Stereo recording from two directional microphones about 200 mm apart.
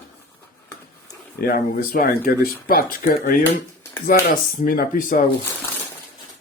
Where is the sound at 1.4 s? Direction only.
45° left (ahead or behind).